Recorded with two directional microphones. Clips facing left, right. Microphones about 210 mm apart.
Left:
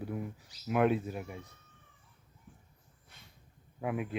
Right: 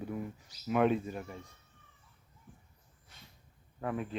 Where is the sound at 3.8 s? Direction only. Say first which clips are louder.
Left 1 dB; 10° left (ahead or behind).